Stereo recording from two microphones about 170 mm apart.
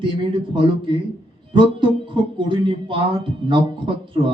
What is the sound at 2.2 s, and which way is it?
Speech, 30° right (ahead or behind).